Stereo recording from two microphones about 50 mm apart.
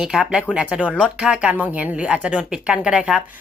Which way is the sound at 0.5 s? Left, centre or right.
Right.